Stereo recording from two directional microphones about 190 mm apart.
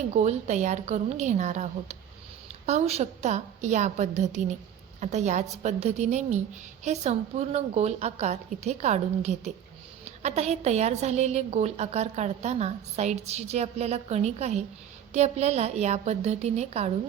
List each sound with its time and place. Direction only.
0.1 s a woman's voice: 35° right (ahead or behind)